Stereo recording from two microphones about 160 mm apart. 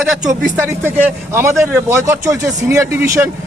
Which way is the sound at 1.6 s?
15° right (ahead or behind).